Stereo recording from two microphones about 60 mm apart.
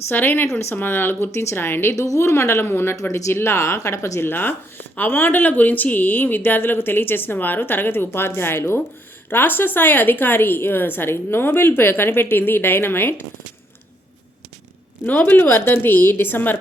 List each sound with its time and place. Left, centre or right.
0.1 s speech: left
1.3 s speech: left
2.0 s speech: left
2.9 s speech: left
4.3 s speech: left
15.0 s speech: left